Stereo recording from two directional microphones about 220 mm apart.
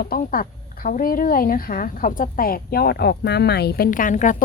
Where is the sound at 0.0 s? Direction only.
40° left (ahead or behind).